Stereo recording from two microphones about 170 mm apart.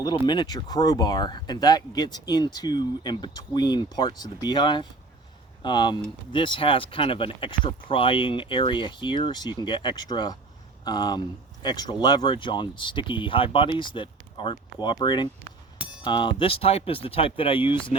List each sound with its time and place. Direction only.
0.0 s speech: 25° left (ahead or behind)